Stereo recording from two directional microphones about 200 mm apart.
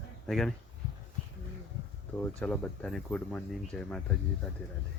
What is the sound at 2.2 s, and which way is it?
Speech, 10° left (ahead or behind).